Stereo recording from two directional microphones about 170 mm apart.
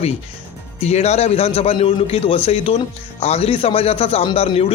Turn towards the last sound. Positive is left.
turn(degrees=35)  # may be behind; listen again after turning